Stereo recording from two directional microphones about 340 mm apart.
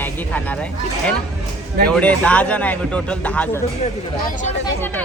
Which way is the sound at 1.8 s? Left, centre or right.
Centre.